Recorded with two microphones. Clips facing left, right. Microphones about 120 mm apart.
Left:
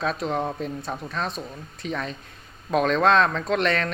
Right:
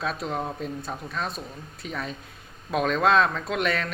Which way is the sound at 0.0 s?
Centre (ahead or behind).